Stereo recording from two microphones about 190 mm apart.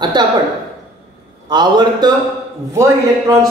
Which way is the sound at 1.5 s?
20° right (ahead or behind).